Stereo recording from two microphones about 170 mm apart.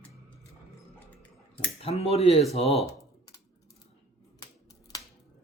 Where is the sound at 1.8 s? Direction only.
40° left (ahead or behind).